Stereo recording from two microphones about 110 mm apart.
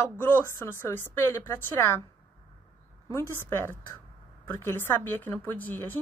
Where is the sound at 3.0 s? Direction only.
25° left (ahead or behind).